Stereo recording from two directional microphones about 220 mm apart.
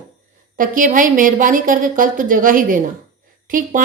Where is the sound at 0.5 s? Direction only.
40° right (ahead or behind).